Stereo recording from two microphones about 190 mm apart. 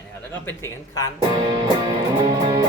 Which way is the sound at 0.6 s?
15° left (ahead or behind).